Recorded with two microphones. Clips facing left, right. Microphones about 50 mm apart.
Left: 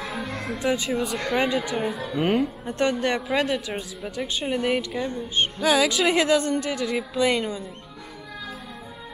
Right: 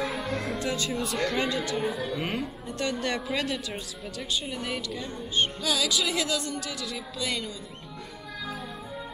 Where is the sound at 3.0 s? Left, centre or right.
Centre.